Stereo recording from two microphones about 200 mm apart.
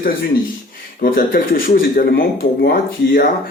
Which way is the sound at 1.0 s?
45° left (ahead or behind).